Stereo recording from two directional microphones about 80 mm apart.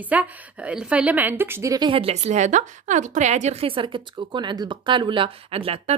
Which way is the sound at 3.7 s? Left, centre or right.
Right.